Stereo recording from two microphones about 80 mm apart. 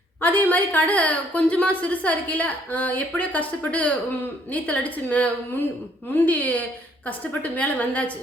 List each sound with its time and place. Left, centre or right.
0.2 s a woman's voice: left